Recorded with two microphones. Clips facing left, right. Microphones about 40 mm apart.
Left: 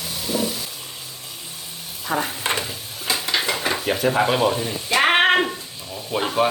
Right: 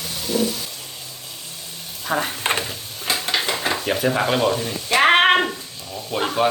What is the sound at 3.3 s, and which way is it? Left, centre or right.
Stir, centre.